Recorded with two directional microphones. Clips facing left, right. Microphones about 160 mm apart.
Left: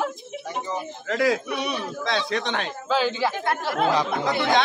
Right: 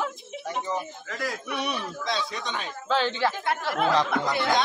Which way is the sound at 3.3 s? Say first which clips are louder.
Left 3 dB; 55° left (ahead or behind).